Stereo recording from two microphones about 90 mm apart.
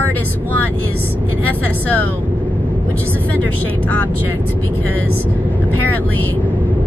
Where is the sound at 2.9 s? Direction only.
25° right (ahead or behind).